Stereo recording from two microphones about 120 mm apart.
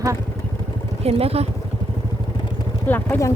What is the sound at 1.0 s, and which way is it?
Speech, 55° right (ahead or behind).